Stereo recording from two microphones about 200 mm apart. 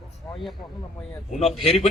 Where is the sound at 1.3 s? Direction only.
Centre (ahead or behind).